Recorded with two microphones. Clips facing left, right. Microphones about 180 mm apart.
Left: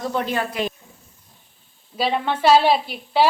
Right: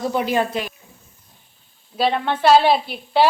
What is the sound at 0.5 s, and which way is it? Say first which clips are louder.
Speech: left 1 dB; 25° right (ahead or behind).